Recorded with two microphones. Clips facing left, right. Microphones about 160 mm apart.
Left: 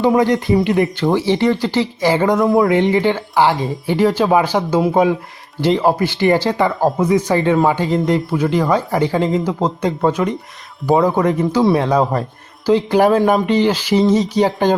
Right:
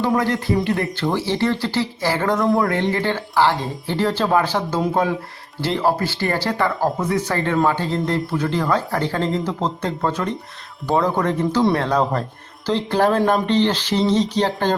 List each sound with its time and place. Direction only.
0.0 s speech: 20° left (ahead or behind)